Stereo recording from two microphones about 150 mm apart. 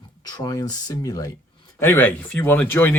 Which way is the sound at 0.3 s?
25° left (ahead or behind).